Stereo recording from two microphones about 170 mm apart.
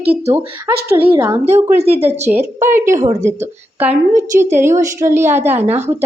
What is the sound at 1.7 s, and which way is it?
Speech, 35° right (ahead or behind).